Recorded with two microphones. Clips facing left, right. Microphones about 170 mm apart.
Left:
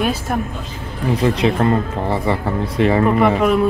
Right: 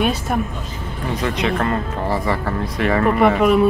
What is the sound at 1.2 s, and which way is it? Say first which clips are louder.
Speech: left 4 dB; 30° left (ahead or behind).